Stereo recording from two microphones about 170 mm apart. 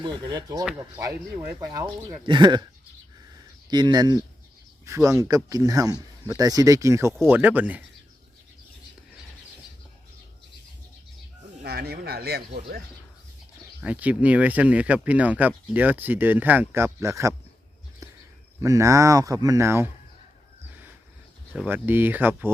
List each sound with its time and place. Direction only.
0.0 s speech: 25° right (ahead or behind)
3.7 s speech: 25° right (ahead or behind); by 7.9 s 10° right (ahead or behind)
11.6 s speech: 65° right (ahead or behind)
13.8 s speech: 10° right (ahead or behind)
18.0 s a sound: 20° right (ahead or behind)
18.6 s speech: 20° right (ahead or behind)
21.5 s speech: 10° right (ahead or behind)